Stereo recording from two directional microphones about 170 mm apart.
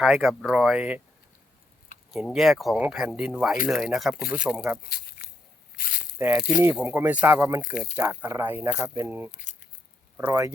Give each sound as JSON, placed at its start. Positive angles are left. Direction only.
{"t": 0.0, "sound": "speech", "side_deg": 0}
{"t": 2.1, "sound": "speech", "side_deg": 0}
{"t": 4.9, "sound": "a sound", "side_deg": 65}
{"t": 5.7, "sound": "snake", "side_deg": 55}
{"t": 6.1, "sound": "speech", "side_deg": -15}
{"t": 9.4, "sound": "a sound", "side_deg": 45}
{"t": 10.2, "sound": "speech", "side_deg": -15}